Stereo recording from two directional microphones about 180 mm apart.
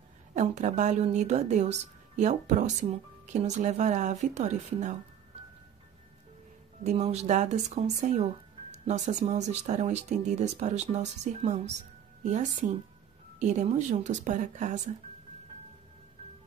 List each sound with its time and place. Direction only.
0.4 s speech: 40° right (ahead or behind)
6.8 s speech: 35° right (ahead or behind)